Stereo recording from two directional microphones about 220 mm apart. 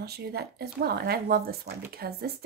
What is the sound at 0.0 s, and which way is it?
Speech, 45° right (ahead or behind).